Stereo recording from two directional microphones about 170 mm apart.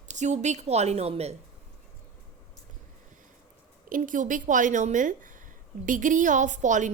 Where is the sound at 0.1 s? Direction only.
45° right (ahead or behind).